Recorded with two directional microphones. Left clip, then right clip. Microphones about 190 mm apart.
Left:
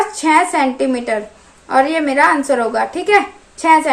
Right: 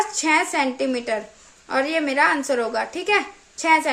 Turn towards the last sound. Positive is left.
turn(degrees=-20)  # may be behind; listen again after turning